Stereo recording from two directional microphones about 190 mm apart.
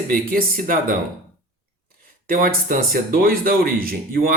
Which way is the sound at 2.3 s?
45° right (ahead or behind).